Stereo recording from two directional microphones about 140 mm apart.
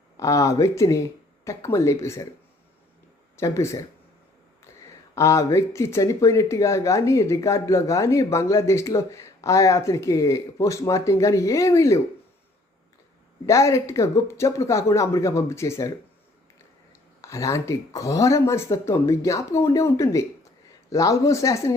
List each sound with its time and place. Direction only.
0.2 s speech: 25° left (ahead or behind)
3.3 s speech: 20° left (ahead or behind)
5.1 s speech: 20° left (ahead or behind)
13.4 s speech: 20° left (ahead or behind)
17.2 s speech: 20° left (ahead or behind)